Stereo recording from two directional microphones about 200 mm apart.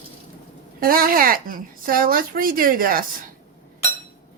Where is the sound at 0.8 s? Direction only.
45° right (ahead or behind).